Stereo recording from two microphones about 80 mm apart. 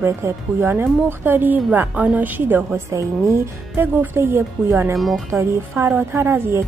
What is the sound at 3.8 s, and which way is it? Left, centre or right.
A woman's voice, right.